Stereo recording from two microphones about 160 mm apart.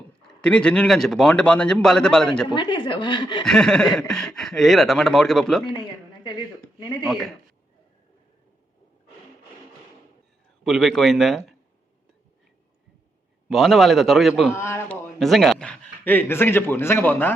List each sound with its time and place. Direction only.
0.4 s a man's voice: 5° left (ahead or behind)
2.6 s a woman's voice: 30° left (ahead or behind)
3.4 s a man's voice: 5° left (ahead or behind)
7.0 s a man's voice: centre (ahead or behind)
10.6 s a man's voice: centre (ahead or behind)
13.5 s a man's voice: centre (ahead or behind)
14.5 s a man's voice: 15° left (ahead or behind)
15.2 s speech: centre (ahead or behind)